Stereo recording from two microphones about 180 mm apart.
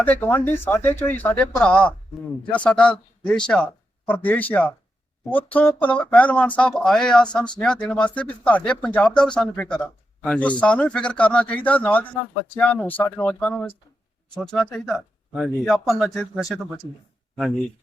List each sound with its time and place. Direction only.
0.0 s speech: 10° left (ahead or behind)